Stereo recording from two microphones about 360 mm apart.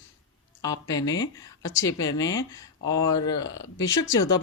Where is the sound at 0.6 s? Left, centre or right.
Centre.